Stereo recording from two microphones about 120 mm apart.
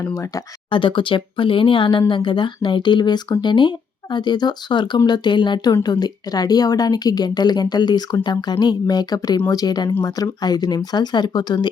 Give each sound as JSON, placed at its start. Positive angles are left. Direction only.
{"t": 0.0, "sound": "speech", "side_deg": 25}
{"t": 0.7, "sound": "speech", "side_deg": 45}